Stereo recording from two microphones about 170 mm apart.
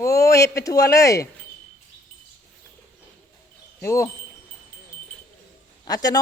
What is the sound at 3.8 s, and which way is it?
Speech, 15° left (ahead or behind).